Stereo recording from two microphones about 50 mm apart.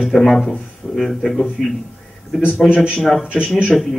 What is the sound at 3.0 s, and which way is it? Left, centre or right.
Speech, centre.